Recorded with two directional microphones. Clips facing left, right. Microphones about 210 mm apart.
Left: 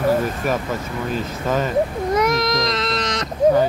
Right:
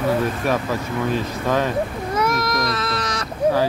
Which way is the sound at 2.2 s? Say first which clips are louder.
Left 1 dB; 20° left (ahead or behind).